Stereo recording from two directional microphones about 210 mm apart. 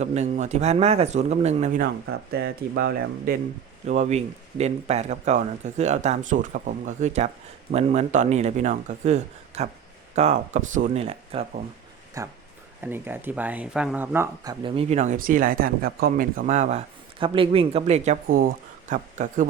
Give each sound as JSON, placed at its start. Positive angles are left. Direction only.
{"t": 0.0, "sound": "speech", "side_deg": -30}
{"t": 2.3, "sound": "speech", "side_deg": -50}
{"t": 3.8, "sound": "speech", "side_deg": -35}
{"t": 12.2, "sound": "speech", "side_deg": -15}
{"t": 14.6, "sound": "speech", "side_deg": -30}